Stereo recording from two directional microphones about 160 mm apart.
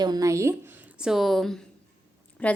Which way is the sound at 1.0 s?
Centre (ahead or behind).